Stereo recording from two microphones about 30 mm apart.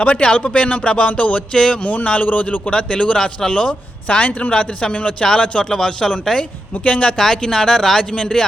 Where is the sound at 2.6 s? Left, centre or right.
Left.